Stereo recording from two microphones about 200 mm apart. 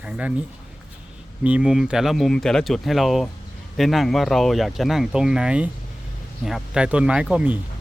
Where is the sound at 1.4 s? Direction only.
5° right (ahead or behind).